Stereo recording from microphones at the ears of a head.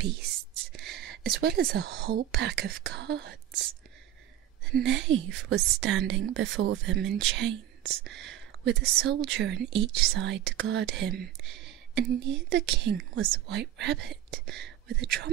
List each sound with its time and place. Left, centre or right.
0.0 s a woman's voice: right